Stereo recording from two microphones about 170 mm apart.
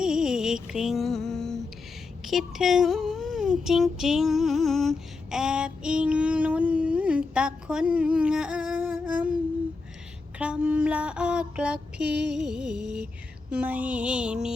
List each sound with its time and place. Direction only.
0.0 s music: 5° right (ahead or behind)
2.2 s speech: centre (ahead or behind)
10.3 s a sound: 5° right (ahead or behind)
13.5 s music: 5° right (ahead or behind)